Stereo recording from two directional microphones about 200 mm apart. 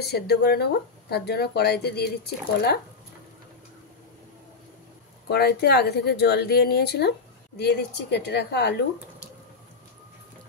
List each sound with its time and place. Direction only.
0.0 s speech: 55° left (ahead or behind)
5.3 s speech: 55° left (ahead or behind)